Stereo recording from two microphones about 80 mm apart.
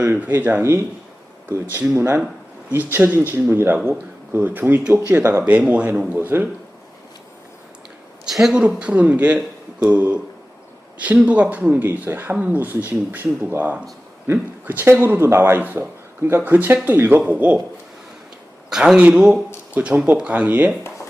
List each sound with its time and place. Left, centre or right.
0.0 s speech: right
5.5 s speech: centre
8.2 s speech: centre
8.8 s speech: centre
11.3 s speech: centre
18.7 s speech: centre